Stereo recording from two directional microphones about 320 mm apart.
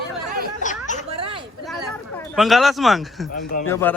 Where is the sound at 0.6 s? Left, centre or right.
Left.